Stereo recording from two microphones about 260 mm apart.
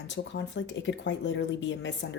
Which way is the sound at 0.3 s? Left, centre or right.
Left.